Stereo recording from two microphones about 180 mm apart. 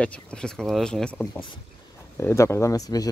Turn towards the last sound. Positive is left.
turn(degrees=20)  # may be behind; listen again after turning